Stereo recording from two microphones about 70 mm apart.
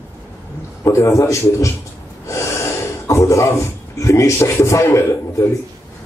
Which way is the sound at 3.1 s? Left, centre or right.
Left.